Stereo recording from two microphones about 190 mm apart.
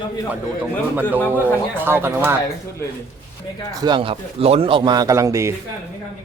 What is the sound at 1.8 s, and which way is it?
Speech, 10° right (ahead or behind).